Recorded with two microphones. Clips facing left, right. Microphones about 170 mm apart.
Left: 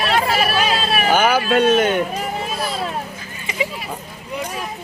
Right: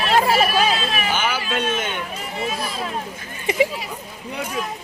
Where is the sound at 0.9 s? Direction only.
45° left (ahead or behind).